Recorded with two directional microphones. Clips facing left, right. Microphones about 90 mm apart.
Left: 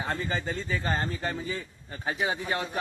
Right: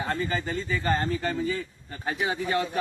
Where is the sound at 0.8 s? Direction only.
20° left (ahead or behind).